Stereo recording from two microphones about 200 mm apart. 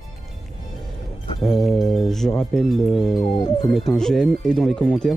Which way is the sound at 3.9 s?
5° left (ahead or behind).